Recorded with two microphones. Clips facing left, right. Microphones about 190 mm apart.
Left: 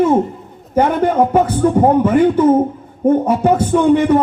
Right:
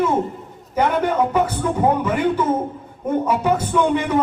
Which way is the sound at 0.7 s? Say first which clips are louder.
Left 5 dB; 50° left (ahead or behind).